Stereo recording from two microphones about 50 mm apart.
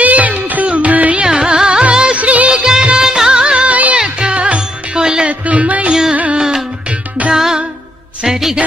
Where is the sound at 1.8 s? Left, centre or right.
Right.